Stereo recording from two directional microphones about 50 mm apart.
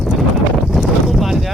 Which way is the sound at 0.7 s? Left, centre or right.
Centre.